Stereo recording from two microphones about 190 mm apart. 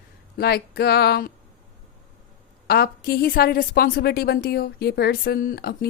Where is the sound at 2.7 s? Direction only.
55° left (ahead or behind).